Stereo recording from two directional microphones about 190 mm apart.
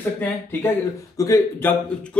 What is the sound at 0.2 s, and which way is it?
Speech, 10° left (ahead or behind).